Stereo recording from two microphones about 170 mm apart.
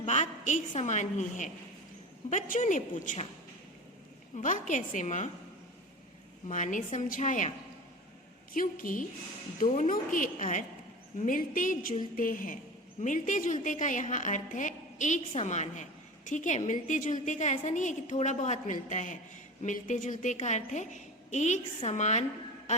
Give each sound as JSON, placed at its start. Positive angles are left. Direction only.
{"t": 0.0, "sound": "a woman's voice", "side_deg": 45}
{"t": 4.4, "sound": "a woman's voice", "side_deg": 45}
{"t": 6.5, "sound": "a woman's voice", "side_deg": 45}
{"t": 8.5, "sound": "a woman's voice", "side_deg": 55}